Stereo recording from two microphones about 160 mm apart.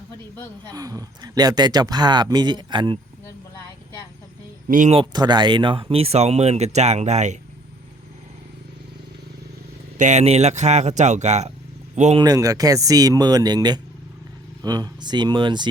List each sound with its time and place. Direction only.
0.7 s speech: 25° right (ahead or behind)
4.7 s speech: 55° right (ahead or behind)
4.9 s speech: 25° right (ahead or behind); by 7.3 s 45° right (ahead or behind)
10.0 s speech: 45° right (ahead or behind)
12.1 s speech: 25° right (ahead or behind)